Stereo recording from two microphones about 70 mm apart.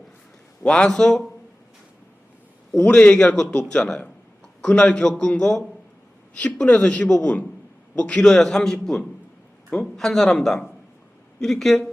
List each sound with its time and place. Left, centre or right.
0.6 s a man's voice: centre
2.7 s a man's voice: centre